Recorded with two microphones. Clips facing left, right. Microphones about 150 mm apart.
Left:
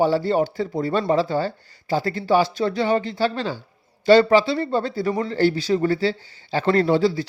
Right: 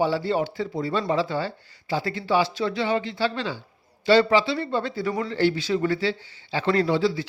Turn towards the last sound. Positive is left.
turn(degrees=45)  # may be behind; listen again after turning